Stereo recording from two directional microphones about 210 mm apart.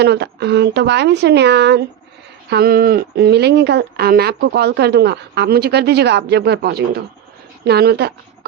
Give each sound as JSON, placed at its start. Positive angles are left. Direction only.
{"t": 0.0, "sound": "speech", "side_deg": -55}